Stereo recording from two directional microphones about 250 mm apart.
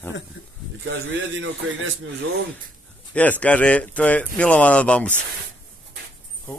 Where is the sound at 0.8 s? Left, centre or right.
Right.